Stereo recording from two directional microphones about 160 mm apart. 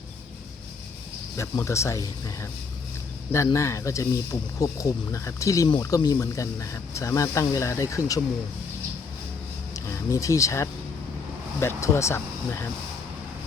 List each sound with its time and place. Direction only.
1.4 s speech: 20° left (ahead or behind)
9.7 s speech: 20° left (ahead or behind)